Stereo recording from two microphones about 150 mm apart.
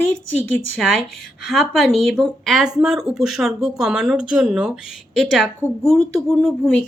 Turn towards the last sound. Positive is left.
turn(degrees=0)  # may be behind; listen again after turning